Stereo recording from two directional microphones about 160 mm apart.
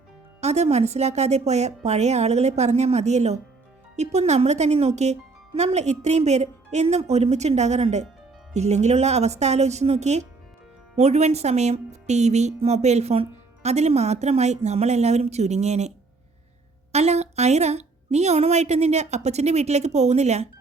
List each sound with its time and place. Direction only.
0.4 s a woman's voice: 45° right (ahead or behind)
16.9 s a woman's voice: 40° right (ahead or behind)